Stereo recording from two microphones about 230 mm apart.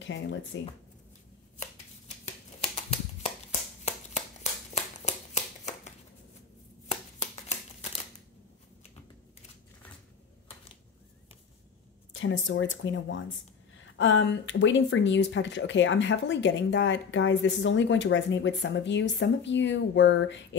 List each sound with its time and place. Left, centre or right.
0.0 s speech: left
1.6 s shuffling cards: left
3.8 s a sound: left
12.1 s speech: left